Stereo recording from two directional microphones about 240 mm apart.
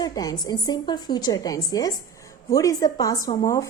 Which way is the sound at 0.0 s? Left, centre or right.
Centre.